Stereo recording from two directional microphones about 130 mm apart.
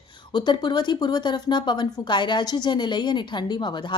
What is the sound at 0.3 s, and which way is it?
Speech, 35° left (ahead or behind).